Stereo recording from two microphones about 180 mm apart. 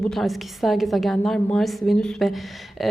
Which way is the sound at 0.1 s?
Centre (ahead or behind).